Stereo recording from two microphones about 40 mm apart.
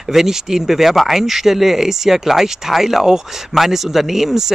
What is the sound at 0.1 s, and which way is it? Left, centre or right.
Speech, centre.